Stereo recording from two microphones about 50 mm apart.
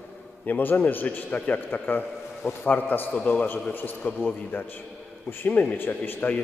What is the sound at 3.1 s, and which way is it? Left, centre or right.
Speech, left.